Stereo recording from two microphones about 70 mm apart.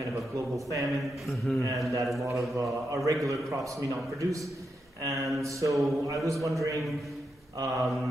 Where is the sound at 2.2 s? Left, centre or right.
Right.